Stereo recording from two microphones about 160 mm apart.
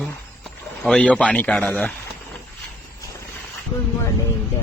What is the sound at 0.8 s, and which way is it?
A man's voice, 5° left (ahead or behind).